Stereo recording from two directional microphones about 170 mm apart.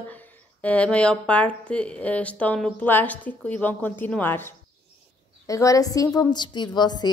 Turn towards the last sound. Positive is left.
turn(degrees=25)  # may be behind; listen again after turning